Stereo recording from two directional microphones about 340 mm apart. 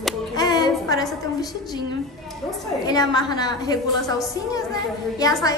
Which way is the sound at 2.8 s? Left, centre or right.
Centre.